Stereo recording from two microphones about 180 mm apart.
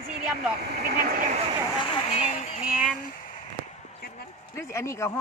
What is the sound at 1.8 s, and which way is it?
Speech, 40° left (ahead or behind).